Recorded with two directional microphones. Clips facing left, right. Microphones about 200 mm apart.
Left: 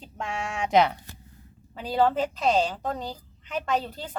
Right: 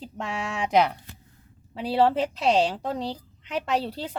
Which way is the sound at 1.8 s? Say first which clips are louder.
Right 2 dB; 30° right (ahead or behind).